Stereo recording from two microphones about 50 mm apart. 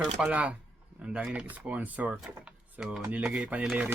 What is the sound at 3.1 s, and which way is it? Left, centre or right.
Speech, right.